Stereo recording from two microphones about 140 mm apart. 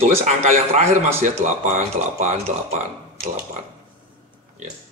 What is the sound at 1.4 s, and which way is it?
Speech, 60° right (ahead or behind).